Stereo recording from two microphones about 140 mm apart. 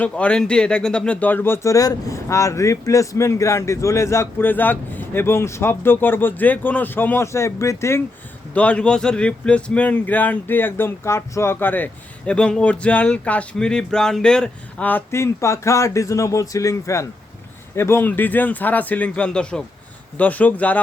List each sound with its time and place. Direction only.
0.0 s speech: 10° left (ahead or behind)